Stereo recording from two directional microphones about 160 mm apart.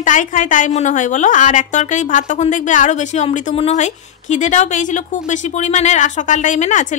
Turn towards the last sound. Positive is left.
turn(degrees=50)  # may be behind; listen again after turning